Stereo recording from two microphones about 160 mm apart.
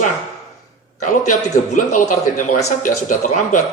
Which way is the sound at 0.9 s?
55° left (ahead or behind).